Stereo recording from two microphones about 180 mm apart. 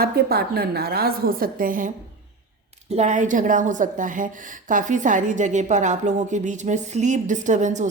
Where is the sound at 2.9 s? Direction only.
40° right (ahead or behind).